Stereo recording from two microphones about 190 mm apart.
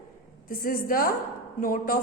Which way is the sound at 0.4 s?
50° left (ahead or behind).